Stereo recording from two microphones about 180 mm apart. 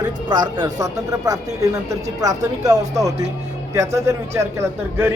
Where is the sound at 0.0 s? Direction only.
25° right (ahead or behind).